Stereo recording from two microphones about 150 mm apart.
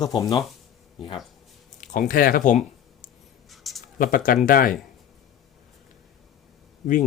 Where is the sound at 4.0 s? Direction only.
70° left (ahead or behind).